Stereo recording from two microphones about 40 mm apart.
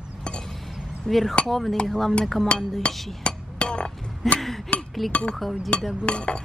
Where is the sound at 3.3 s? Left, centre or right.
Left.